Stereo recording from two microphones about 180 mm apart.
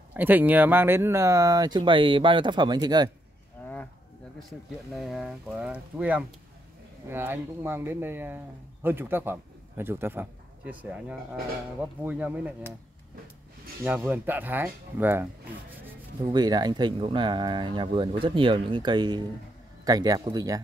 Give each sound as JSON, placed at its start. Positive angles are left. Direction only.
{"t": 0.1, "sound": "speech", "side_deg": -10}
{"t": 3.6, "sound": "livestock", "side_deg": 10}
{"t": 4.4, "sound": "a man's voice", "side_deg": 0}
{"t": 13.8, "sound": "speech", "side_deg": -10}
{"t": 16.2, "sound": "speech", "side_deg": -25}